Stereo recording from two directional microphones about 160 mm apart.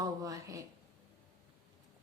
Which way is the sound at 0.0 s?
20° right (ahead or behind).